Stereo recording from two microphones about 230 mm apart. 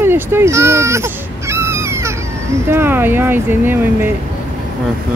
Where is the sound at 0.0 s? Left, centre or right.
Centre.